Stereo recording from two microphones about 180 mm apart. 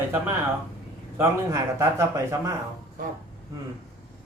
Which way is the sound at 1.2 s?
15° right (ahead or behind).